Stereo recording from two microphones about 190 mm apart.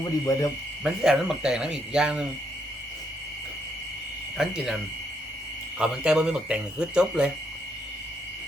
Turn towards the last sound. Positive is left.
turn(degrees=-5)  # may be behind; listen again after turning